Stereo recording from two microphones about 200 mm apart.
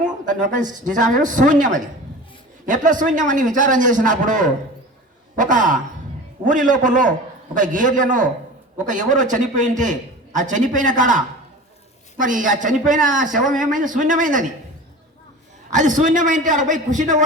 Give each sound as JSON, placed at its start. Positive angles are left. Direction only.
{"t": 0.0, "sound": "a sound", "side_deg": -40}
{"t": 0.9, "sound": "a man's voice", "side_deg": -40}
{"t": 12.2, "sound": "a man's voice", "side_deg": -40}
{"t": 15.7, "sound": "a man's voice", "side_deg": -40}